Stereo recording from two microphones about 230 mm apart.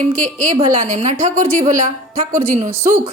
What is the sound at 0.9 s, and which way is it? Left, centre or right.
A woman's voice, right.